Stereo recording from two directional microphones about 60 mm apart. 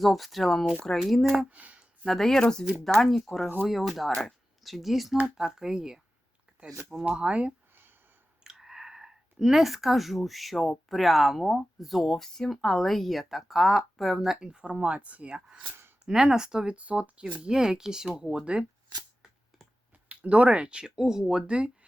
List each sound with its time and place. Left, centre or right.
0.0 s speech: centre
1.5 s speech: right
2.0 s speech: centre
7.2 s speech: centre
8.4 s speech: centre
20.1 s speech: right